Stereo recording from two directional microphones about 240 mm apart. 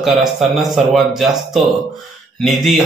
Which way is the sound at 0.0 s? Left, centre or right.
Centre.